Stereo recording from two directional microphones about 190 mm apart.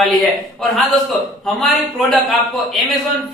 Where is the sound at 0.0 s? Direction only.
Centre (ahead or behind).